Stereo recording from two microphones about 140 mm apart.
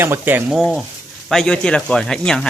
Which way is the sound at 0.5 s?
Centre (ahead or behind).